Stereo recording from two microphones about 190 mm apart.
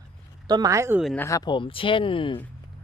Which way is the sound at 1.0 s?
5° left (ahead or behind).